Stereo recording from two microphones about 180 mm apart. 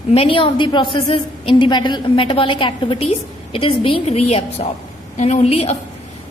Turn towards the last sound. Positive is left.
turn(degrees=35)  # may be behind; listen again after turning